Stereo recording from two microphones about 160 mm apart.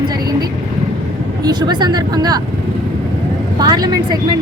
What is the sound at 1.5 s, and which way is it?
Speech, 25° right (ahead or behind).